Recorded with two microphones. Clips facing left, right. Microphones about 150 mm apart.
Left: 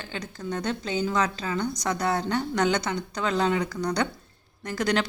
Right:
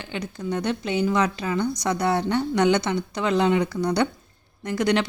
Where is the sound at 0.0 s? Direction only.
15° right (ahead or behind).